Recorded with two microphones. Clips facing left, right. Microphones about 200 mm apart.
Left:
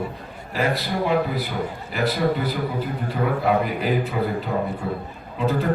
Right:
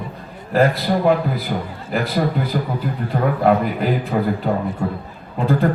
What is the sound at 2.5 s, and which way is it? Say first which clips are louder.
A man's voice: right 3 dB; 50° right (ahead or behind).